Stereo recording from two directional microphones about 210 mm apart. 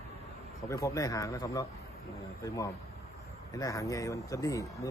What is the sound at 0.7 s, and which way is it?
Speech, 15° left (ahead or behind).